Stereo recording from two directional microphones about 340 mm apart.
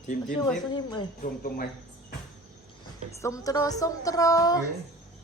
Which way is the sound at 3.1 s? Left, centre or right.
Centre.